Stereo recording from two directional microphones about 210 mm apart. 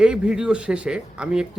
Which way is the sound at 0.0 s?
5° right (ahead or behind).